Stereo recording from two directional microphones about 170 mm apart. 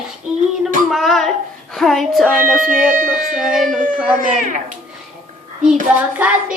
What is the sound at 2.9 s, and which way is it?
Speech, 50° right (ahead or behind).